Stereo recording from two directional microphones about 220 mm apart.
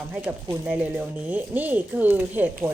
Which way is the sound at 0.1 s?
5° right (ahead or behind).